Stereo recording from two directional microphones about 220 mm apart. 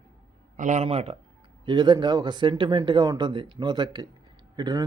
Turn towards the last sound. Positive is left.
turn(degrees=-20)  # may be behind; listen again after turning